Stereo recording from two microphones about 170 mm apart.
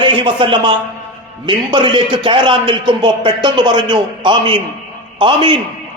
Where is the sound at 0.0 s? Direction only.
30° right (ahead or behind).